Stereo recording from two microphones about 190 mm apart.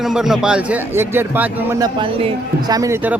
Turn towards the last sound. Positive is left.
turn(degrees=-10)  # may be behind; listen again after turning